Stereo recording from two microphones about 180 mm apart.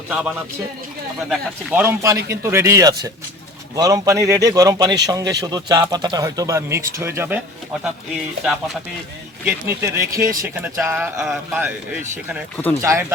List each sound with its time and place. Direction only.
0.1 s a man's voice: 5° right (ahead or behind)
9.4 s a man's voice: 10° right (ahead or behind)